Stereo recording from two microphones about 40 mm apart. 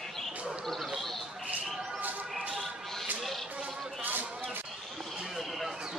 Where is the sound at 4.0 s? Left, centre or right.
Right.